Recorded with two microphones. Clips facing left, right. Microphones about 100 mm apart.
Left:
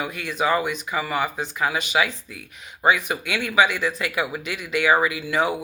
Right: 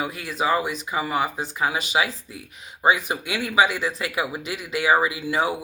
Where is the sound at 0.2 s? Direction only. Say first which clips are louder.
Left 2 dB; 30° right (ahead or behind).